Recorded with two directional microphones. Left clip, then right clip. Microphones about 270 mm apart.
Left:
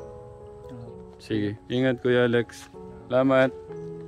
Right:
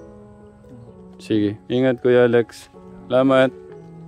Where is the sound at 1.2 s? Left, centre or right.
Right.